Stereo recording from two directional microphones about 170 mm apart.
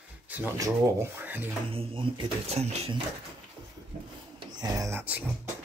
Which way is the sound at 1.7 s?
30° right (ahead or behind).